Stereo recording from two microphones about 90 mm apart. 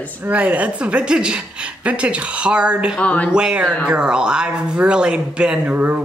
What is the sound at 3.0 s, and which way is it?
Speech, 15° left (ahead or behind).